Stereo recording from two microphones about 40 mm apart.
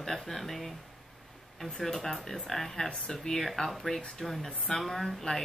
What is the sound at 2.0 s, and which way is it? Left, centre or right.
Speech, centre.